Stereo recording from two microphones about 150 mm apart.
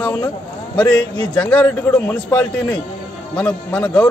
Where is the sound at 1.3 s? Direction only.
10° left (ahead or behind).